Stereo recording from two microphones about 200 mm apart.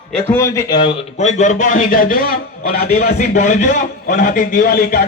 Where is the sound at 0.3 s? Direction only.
15° left (ahead or behind); by 3.2 s 50° left (ahead or behind).